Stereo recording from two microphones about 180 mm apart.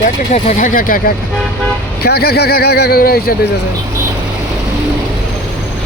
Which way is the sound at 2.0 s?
60° left (ahead or behind).